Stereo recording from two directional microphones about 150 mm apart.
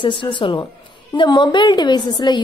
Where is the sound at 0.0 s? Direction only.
35° left (ahead or behind).